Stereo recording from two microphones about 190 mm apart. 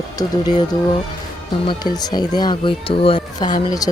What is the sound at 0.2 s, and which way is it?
Speech, 20° left (ahead or behind).